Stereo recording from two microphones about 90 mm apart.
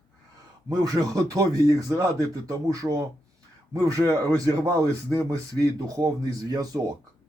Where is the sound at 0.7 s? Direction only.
45° right (ahead or behind).